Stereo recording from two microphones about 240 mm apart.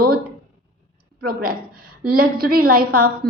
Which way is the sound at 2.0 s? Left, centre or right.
Right.